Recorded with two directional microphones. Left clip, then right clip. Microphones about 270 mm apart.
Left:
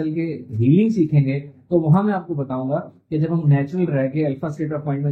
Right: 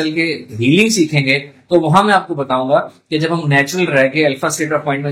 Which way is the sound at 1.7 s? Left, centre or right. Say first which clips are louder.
Right 8 dB; right.